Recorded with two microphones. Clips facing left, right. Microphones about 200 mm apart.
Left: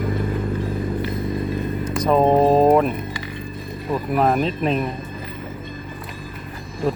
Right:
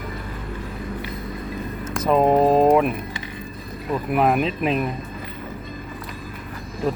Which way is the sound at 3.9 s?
Centre (ahead or behind).